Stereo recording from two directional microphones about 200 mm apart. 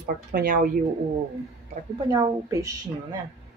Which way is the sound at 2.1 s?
15° right (ahead or behind).